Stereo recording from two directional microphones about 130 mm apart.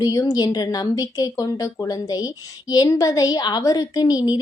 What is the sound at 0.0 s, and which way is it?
A woman's voice, 25° left (ahead or behind).